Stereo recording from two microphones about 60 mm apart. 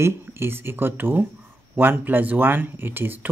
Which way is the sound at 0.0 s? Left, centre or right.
Right.